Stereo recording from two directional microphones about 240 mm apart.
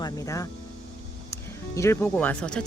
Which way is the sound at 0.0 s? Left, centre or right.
Centre.